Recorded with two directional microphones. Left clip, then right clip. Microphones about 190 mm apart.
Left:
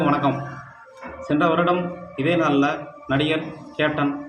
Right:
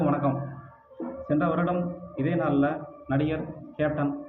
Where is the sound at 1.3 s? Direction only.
10° left (ahead or behind).